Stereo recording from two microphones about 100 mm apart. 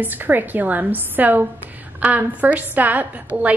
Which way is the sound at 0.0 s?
20° right (ahead or behind).